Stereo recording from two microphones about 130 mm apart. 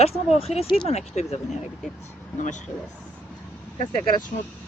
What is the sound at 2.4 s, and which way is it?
Speech, 70° left (ahead or behind).